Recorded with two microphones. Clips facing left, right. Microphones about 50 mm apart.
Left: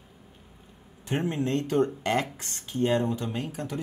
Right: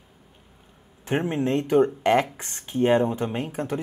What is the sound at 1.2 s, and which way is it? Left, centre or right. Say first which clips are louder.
Speech: right 2 dB; right.